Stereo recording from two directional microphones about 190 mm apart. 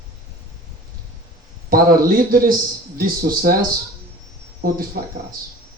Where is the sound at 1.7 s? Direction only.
50° right (ahead or behind).